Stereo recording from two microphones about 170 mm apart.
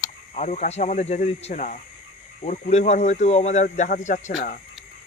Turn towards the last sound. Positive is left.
turn(degrees=50)  # may be behind; listen again after turning